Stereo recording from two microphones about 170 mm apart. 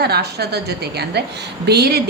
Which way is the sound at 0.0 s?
70° right (ahead or behind).